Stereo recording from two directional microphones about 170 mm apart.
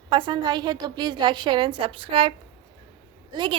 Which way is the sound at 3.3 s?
25° right (ahead or behind).